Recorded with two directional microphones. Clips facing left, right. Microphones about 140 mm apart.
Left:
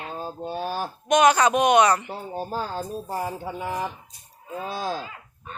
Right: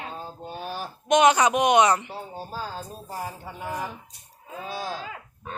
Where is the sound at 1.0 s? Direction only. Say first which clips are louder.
Even; 20° right (ahead or behind).